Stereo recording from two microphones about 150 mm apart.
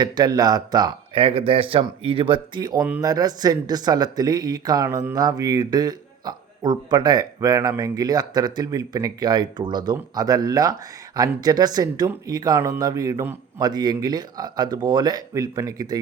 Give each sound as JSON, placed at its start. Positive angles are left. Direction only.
{"t": 0.0, "sound": "a man's voice", "side_deg": -25}